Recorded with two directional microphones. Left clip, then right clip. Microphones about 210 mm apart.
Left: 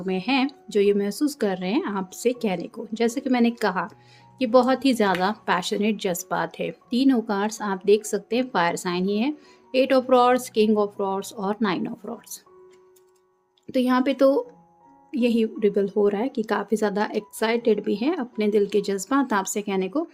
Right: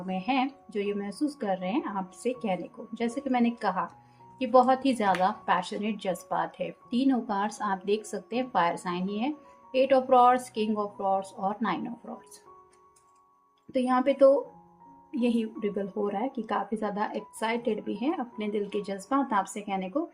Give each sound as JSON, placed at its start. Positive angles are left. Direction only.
{"t": 0.0, "sound": "speech", "side_deg": 45}
{"t": 13.7, "sound": "speech", "side_deg": 45}